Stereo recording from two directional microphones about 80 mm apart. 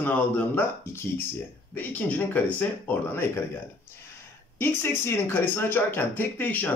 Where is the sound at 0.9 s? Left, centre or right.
Left.